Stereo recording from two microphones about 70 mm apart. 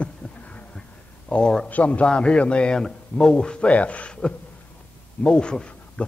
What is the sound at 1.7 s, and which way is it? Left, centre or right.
A man's voice, left.